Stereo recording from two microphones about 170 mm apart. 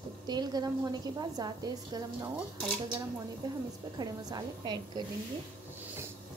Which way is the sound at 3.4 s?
20° right (ahead or behind).